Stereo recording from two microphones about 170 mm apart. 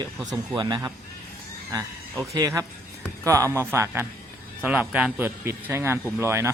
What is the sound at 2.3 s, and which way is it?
A man's voice, 20° right (ahead or behind).